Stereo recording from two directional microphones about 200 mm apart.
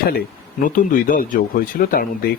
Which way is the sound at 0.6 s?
40° left (ahead or behind).